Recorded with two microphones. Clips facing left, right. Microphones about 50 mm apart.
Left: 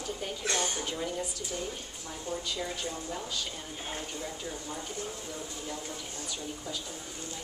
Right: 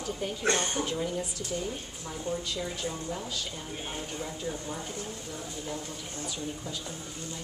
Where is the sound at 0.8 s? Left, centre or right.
Centre.